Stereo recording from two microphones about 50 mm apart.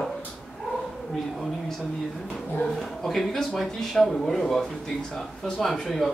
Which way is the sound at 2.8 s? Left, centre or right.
Centre.